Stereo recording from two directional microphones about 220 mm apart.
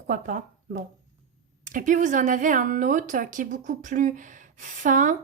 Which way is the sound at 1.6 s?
35° right (ahead or behind).